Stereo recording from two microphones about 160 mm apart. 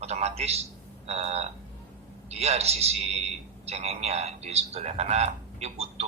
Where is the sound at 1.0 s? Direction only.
40° right (ahead or behind).